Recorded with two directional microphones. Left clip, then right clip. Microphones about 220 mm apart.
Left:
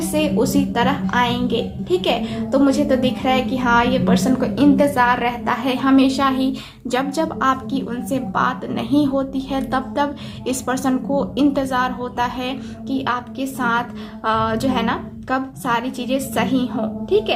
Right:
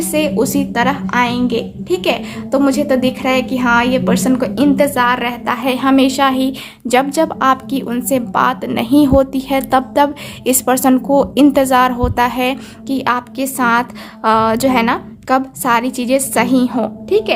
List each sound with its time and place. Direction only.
0.1 s a woman's voice: 45° right (ahead or behind)